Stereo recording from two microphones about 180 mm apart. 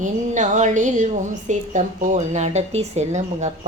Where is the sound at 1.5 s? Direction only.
45° right (ahead or behind).